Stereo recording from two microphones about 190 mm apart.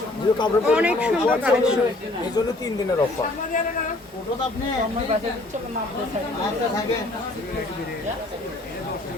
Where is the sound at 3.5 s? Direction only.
45° left (ahead or behind).